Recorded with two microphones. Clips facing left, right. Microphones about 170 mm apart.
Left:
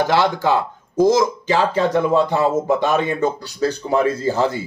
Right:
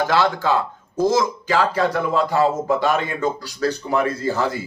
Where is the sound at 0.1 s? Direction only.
15° left (ahead or behind).